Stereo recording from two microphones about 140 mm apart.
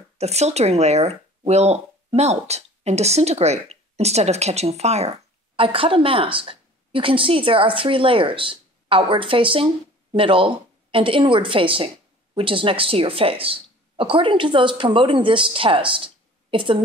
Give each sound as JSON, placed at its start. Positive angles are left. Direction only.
{"t": 0.2, "sound": "speech", "side_deg": -50}
{"t": 5.6, "sound": "a woman's voice", "side_deg": -40}